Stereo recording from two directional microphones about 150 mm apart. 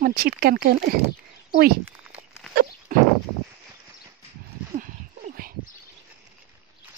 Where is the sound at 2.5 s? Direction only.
90° right.